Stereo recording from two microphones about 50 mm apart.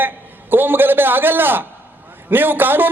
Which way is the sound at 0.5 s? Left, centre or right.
Right.